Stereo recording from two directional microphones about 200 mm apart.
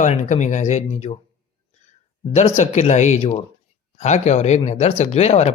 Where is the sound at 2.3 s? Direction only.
35° left (ahead or behind).